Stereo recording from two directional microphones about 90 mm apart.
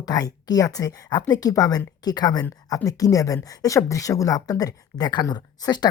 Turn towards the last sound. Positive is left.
turn(degrees=50)  # may be behind; listen again after turning